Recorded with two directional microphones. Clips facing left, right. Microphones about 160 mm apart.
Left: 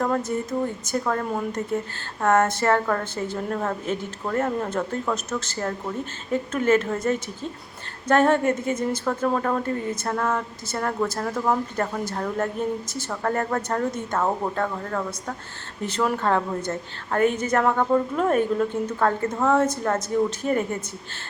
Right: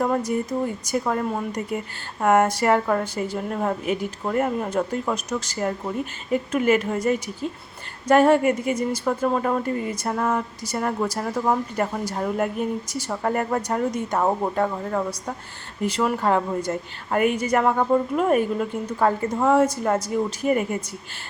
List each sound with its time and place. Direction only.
0.0 s speech: 10° right (ahead or behind)